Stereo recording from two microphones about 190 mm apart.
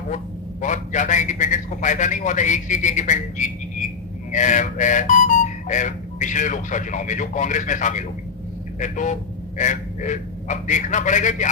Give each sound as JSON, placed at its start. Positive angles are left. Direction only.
{"t": 0.6, "sound": "speech", "side_deg": 40}